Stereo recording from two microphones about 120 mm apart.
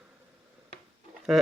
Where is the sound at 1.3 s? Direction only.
5° right (ahead or behind).